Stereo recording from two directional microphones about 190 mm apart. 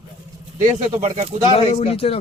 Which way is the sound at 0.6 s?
35° right (ahead or behind).